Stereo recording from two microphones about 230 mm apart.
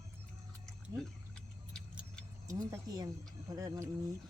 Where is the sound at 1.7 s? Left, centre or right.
Centre.